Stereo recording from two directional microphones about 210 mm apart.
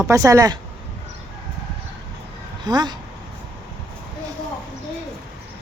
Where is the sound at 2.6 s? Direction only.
20° right (ahead or behind).